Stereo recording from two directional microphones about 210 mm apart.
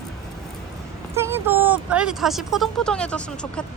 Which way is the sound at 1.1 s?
10° right (ahead or behind).